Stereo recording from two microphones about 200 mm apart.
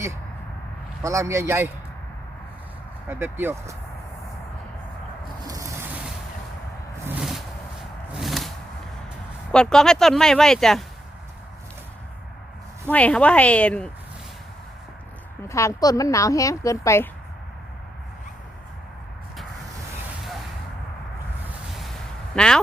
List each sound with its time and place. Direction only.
1.0 s a man's voice: 15° right (ahead or behind)
3.1 s a man's voice: 10° right (ahead or behind)
5.5 s ocean: 15° right (ahead or behind)
7.2 s a sound: centre (ahead or behind)
9.5 s speech: 5° left (ahead or behind)
12.9 s speech: 5° left (ahead or behind)
15.4 s speech: 15° left (ahead or behind)
22.4 s speech: 5° left (ahead or behind)